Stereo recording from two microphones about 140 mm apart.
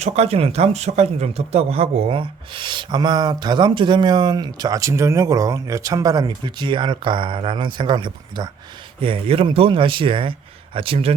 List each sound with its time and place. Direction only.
0.0 s speech: 45° right (ahead or behind)